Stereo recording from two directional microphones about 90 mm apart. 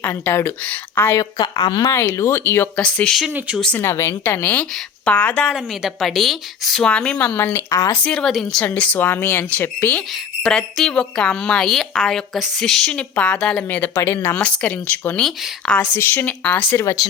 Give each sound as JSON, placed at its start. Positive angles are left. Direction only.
{"t": 0.0, "sound": "speech", "side_deg": 25}
{"t": 1.5, "sound": "speech", "side_deg": 55}
{"t": 2.1, "sound": "speech", "side_deg": 30}
{"t": 2.7, "sound": "a woman's voice", "side_deg": 10}
{"t": 3.2, "sound": "speech", "side_deg": -10}
{"t": 3.8, "sound": "a woman's voice", "side_deg": 30}
{"t": 5.5, "sound": "a woman's voice", "side_deg": 0}
{"t": 7.3, "sound": "speech", "side_deg": 30}
{"t": 8.0, "sound": "a woman's voice", "side_deg": 10}
{"t": 8.3, "sound": "a woman's voice", "side_deg": 0}
{"t": 8.6, "sound": "speech", "side_deg": 15}
{"t": 10.4, "sound": "a woman's voice", "side_deg": 5}
{"t": 16.0, "sound": "speech", "side_deg": 25}
{"t": 16.7, "sound": "speech", "side_deg": 40}